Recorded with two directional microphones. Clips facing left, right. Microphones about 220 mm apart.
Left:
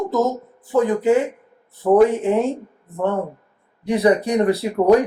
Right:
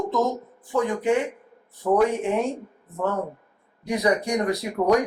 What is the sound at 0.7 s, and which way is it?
Speech, 20° left (ahead or behind).